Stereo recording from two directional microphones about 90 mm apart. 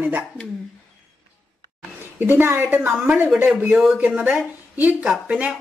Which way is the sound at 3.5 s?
10° right (ahead or behind).